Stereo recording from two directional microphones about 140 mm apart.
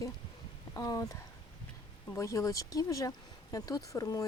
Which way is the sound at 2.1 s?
20° left (ahead or behind).